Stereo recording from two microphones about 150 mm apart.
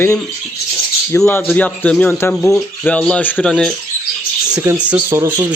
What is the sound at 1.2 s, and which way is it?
A man's voice, 10° left (ahead or behind).